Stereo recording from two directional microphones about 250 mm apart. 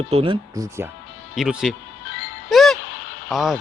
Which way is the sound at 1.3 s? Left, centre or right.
Centre.